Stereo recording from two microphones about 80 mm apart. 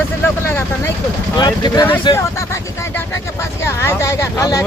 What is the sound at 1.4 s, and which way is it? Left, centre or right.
Speech, left.